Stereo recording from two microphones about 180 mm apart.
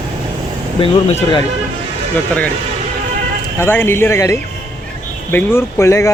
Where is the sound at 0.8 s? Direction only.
30° left (ahead or behind).